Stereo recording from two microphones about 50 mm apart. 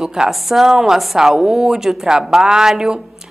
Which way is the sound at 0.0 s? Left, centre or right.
Centre.